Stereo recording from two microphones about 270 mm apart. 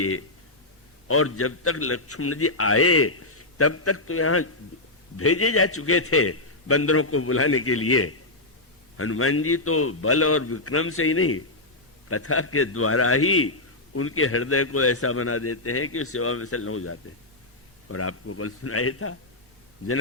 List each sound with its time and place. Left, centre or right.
0.0 s a man's voice: left